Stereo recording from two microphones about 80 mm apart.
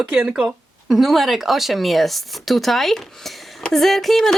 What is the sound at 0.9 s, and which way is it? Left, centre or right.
Speech, centre.